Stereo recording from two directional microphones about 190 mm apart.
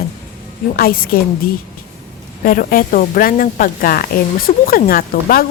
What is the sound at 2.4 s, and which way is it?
A woman's voice, 50° left (ahead or behind).